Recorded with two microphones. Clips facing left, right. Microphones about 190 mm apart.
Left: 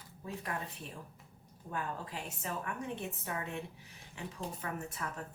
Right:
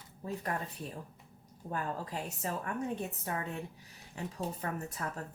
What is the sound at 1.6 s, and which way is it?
A woman's voice, 40° right (ahead or behind).